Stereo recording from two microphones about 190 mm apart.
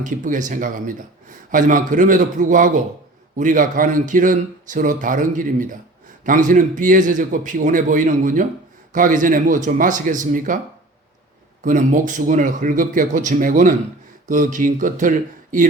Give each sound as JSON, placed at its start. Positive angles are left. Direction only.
{"t": 0.0, "sound": "speech", "side_deg": -40}
{"t": 11.6, "sound": "speech", "side_deg": -45}